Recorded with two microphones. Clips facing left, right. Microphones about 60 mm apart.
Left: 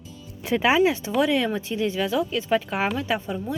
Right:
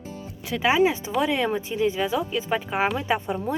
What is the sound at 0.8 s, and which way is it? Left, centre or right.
Speech, centre.